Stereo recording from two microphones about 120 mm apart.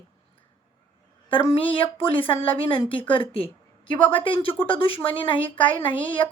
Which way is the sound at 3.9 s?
15° left (ahead or behind).